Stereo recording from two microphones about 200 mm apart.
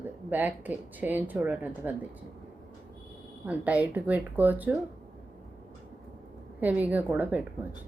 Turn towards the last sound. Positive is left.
turn(degrees=-10)  # may be behind; listen again after turning